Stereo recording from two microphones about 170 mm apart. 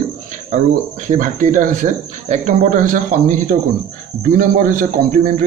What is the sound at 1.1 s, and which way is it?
Speech, 50° right (ahead or behind).